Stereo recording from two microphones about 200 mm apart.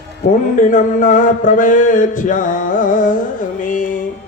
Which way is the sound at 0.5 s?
40° left (ahead or behind).